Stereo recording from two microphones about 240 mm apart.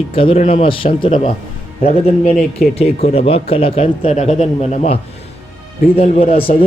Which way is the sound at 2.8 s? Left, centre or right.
Left.